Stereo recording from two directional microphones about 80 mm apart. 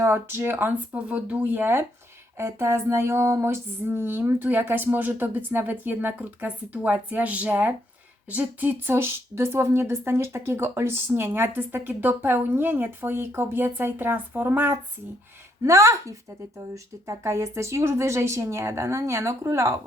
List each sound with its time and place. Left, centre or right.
0.0 s a woman's voice: right
1.0 s a woman's voice: centre
15.6 s a woman's voice: right